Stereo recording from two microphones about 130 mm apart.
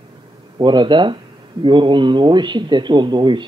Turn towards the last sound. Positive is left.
turn(degrees=-35)  # may be behind; listen again after turning